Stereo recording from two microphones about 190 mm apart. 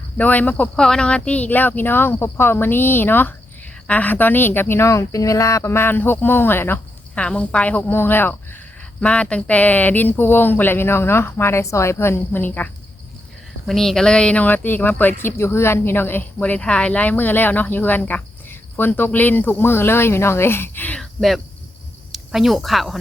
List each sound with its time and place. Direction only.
0.2 s speech: 10° left (ahead or behind)